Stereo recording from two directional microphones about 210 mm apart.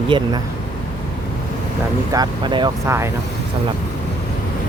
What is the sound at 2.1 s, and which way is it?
Speech, 20° right (ahead or behind).